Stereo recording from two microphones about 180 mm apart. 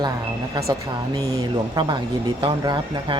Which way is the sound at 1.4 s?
25° right (ahead or behind).